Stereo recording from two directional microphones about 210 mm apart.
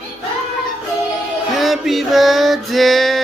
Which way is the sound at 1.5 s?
Centre (ahead or behind).